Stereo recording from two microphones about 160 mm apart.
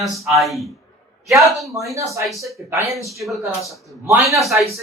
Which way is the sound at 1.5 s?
Centre (ahead or behind).